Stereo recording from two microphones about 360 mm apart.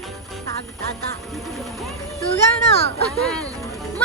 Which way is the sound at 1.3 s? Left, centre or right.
Centre.